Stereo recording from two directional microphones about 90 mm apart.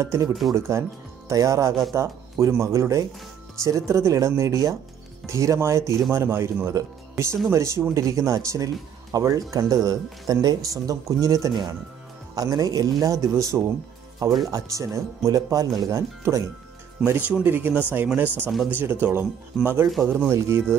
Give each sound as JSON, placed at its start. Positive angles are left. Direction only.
{"t": 0.0, "sound": "speech", "side_deg": -35}
{"t": 17.0, "sound": "speech", "side_deg": -20}